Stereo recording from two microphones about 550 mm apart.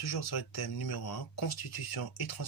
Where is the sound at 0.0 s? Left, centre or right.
Left.